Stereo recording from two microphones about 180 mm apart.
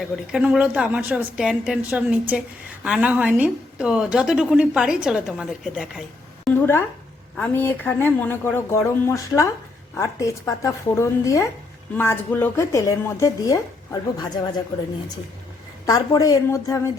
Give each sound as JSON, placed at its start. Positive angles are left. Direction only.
{"t": 0.0, "sound": "a woman's voice", "side_deg": -5}
{"t": 15.9, "sound": "a woman's voice", "side_deg": 20}